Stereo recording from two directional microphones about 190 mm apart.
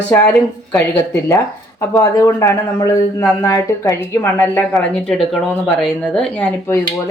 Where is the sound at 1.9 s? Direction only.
20° left (ahead or behind).